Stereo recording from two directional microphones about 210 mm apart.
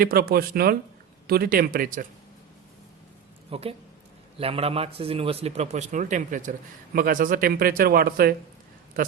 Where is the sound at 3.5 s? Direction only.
25° right (ahead or behind).